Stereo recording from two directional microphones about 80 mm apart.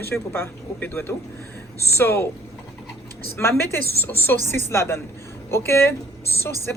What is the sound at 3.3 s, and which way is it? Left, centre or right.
Speech, left.